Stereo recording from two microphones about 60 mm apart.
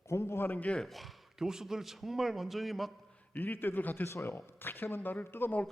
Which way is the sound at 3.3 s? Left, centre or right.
Left.